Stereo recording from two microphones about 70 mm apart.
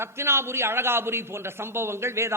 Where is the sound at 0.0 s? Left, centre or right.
Right.